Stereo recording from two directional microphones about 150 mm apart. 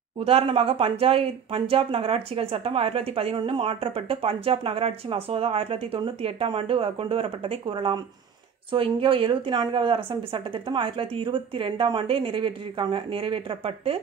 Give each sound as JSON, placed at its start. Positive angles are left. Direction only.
{"t": 0.2, "sound": "speech", "side_deg": -40}